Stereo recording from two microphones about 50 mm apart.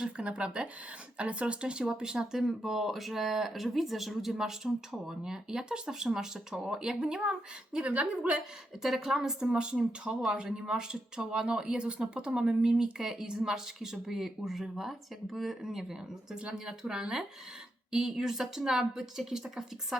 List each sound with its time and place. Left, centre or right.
0.0 s speech: right
8.8 s speech: centre